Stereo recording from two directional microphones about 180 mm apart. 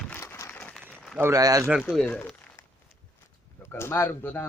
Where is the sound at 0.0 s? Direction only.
10° left (ahead or behind).